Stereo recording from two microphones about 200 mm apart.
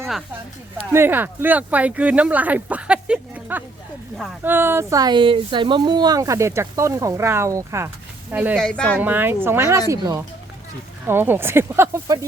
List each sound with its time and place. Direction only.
0.9 s speech: 10° right (ahead or behind)
4.4 s speech: 10° right (ahead or behind)
8.5 s speech: 5° left (ahead or behind)
9.0 s speech: 10° right (ahead or behind)